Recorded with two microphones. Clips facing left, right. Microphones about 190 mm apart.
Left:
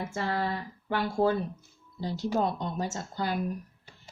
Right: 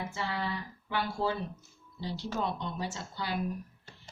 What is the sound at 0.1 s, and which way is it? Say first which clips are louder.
Speech: left 5 dB; 50° left (ahead or behind).